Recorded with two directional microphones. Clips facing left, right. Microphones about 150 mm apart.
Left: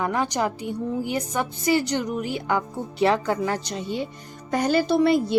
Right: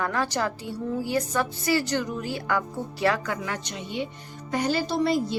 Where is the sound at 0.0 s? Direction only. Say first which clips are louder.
Left 3 dB; 20° left (ahead or behind); by 4.1 s 40° left (ahead or behind).